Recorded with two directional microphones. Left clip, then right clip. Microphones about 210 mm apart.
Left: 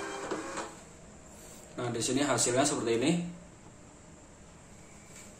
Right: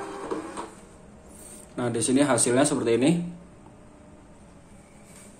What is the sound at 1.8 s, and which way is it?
Speech, 40° right (ahead or behind).